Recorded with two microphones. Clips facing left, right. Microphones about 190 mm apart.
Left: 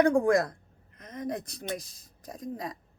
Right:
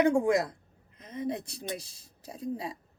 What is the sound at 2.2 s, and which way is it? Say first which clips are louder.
Speech: right 1 dB; 10° right (ahead or behind).